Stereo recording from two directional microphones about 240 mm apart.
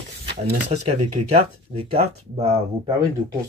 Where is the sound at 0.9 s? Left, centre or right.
Right.